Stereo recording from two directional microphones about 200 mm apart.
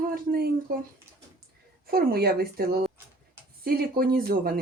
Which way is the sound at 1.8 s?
50° right (ahead or behind).